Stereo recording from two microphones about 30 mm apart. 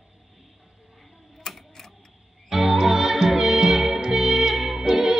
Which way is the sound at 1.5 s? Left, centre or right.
Centre.